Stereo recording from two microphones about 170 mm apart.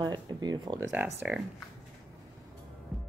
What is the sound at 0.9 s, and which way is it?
Speech, 10° right (ahead or behind).